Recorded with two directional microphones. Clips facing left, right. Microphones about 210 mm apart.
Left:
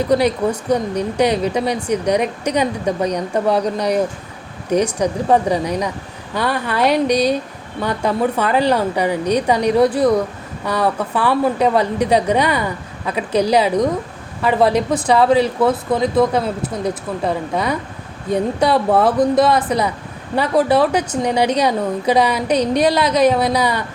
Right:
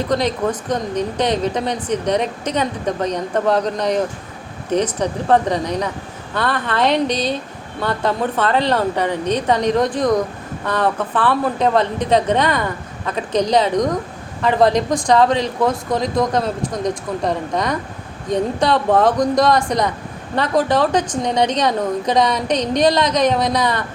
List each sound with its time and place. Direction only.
0.0 s a woman's voice: 10° left (ahead or behind)